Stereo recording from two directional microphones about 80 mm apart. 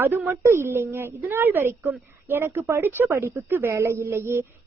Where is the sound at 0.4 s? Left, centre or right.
Right.